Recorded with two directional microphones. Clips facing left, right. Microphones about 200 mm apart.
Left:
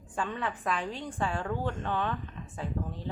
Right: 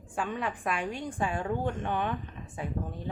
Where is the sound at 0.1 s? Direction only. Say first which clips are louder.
Right 1 dB; 10° right (ahead or behind).